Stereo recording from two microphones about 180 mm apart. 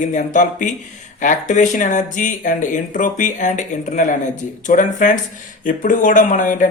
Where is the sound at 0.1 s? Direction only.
45° left (ahead or behind).